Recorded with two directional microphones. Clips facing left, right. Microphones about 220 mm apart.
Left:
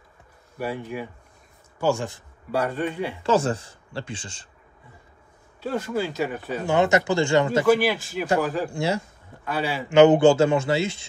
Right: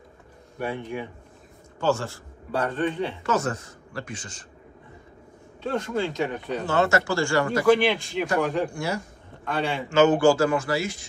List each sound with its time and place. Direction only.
0.6 s a man's voice: 5° left (ahead or behind)
3.3 s a man's voice: 30° left (ahead or behind)
5.6 s speech: 5° left (ahead or behind)
7.6 s a man's voice: 5° left (ahead or behind)
8.7 s a man's voice: 25° left (ahead or behind)
9.4 s a man's voice: 5° left (ahead or behind)
9.8 s a man's voice: 20° left (ahead or behind)